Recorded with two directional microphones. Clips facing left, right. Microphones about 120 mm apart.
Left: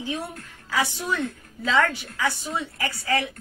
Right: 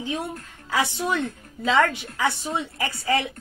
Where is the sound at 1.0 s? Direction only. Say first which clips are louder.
Right 2 dB; 20° right (ahead or behind).